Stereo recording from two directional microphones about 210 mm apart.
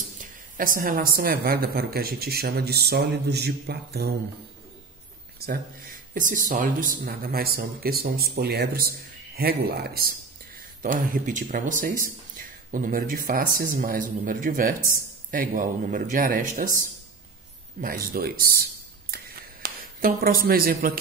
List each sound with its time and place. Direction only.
0.2 s speech: 40° right (ahead or behind)
6.1 s speech: 40° right (ahead or behind)
17.7 s a sound: 45° right (ahead or behind)